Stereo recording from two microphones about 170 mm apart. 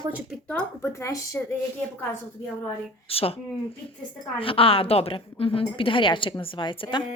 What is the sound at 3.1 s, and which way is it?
Speech, 35° left (ahead or behind).